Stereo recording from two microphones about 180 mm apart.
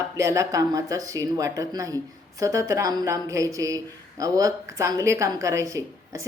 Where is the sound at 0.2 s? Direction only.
20° right (ahead or behind).